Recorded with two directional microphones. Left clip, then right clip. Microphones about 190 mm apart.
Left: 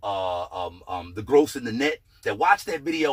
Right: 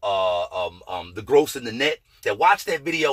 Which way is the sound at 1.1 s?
10° right (ahead or behind).